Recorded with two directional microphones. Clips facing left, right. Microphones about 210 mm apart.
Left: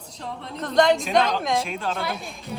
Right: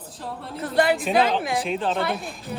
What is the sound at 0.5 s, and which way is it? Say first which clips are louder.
Speech: left 2 dB; 5° right (ahead or behind).